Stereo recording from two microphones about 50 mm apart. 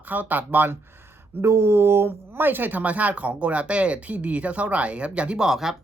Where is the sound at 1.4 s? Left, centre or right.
Right.